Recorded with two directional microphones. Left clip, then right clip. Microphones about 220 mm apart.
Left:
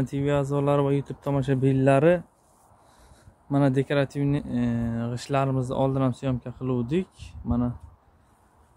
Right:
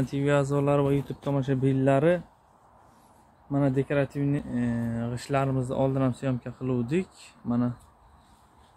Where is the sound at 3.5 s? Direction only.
20° left (ahead or behind); by 7.7 s 5° left (ahead or behind).